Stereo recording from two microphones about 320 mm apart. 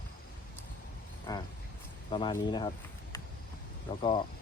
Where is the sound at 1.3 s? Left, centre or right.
Centre.